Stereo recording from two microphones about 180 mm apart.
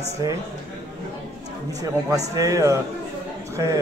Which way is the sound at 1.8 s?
20° right (ahead or behind).